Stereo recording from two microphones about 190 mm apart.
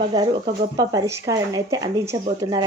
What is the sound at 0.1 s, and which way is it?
A woman's voice, 20° right (ahead or behind).